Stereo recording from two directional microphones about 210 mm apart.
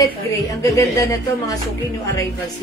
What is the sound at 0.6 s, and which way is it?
Speech, 15° left (ahead or behind).